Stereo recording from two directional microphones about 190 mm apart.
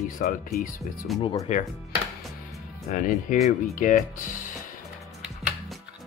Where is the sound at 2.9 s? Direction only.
45° left (ahead or behind).